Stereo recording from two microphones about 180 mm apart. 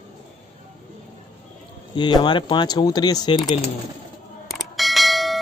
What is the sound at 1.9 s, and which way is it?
Speech, 25° left (ahead or behind).